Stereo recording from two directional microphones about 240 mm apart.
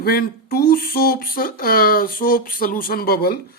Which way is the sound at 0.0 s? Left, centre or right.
Left.